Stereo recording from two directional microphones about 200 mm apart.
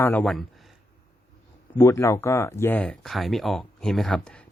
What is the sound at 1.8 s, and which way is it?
Speech, 15° left (ahead or behind).